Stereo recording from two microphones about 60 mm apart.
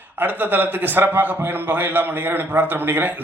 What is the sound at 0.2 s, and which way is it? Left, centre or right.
A man's voice, right.